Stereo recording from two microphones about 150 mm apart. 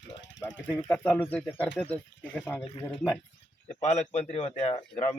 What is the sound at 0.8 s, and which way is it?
Speech, 10° left (ahead or behind).